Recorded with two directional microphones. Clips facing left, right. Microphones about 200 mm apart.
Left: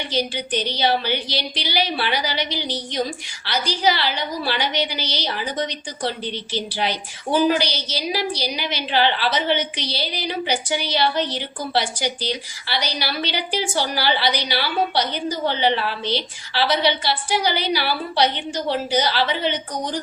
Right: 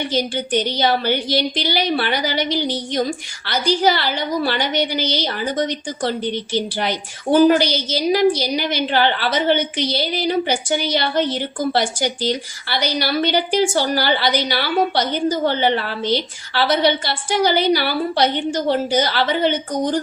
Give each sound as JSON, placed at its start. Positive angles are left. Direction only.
{"t": 0.0, "sound": "a woman's voice", "side_deg": -50}